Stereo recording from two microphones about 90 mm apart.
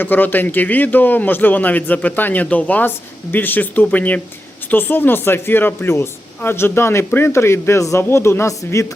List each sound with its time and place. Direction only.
0.0 s speech: 20° left (ahead or behind)